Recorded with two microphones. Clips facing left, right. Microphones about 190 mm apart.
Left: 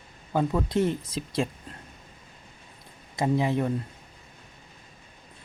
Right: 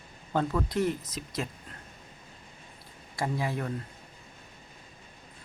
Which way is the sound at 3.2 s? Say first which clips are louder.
Left 7 dB; 25° left (ahead or behind).